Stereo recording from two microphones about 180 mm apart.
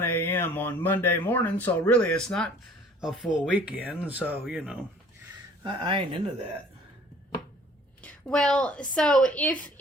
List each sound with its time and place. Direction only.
0.0 s speech: 10° left (ahead or behind); by 4.8 s 5° right (ahead or behind)
5.6 s speech: 25° right (ahead or behind)
8.0 s speech: 5° left (ahead or behind)